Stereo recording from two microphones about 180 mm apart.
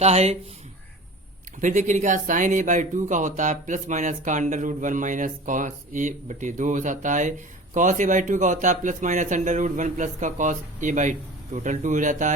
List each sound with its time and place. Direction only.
0.0 s speech: 35° right (ahead or behind)
1.6 s speech: 45° right (ahead or behind)